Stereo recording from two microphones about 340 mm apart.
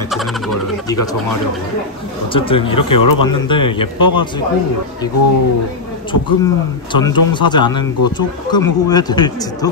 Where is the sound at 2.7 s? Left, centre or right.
Left.